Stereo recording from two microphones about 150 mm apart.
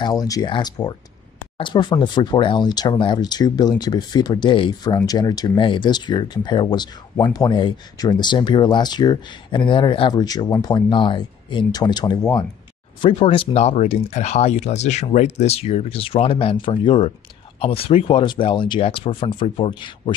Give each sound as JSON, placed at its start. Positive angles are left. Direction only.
{"t": 0.0, "sound": "speech", "side_deg": 25}